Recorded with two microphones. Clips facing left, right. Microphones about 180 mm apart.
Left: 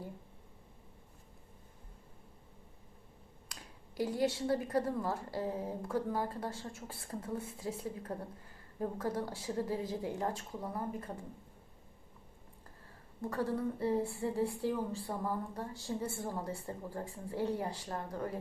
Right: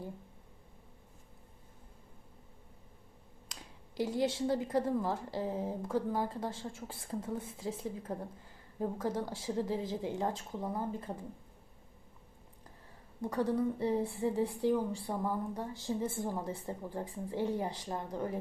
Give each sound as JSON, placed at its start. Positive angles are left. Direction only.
{"t": 3.5, "sound": "a sound", "side_deg": -20}
{"t": 4.4, "sound": "a woman's voice", "side_deg": -20}
{"t": 13.2, "sound": "a woman's voice", "side_deg": -15}